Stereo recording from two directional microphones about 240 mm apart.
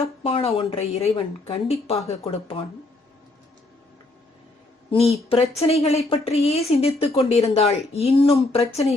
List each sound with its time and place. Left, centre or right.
0.0 s a woman's voice: left
4.9 s a woman's voice: left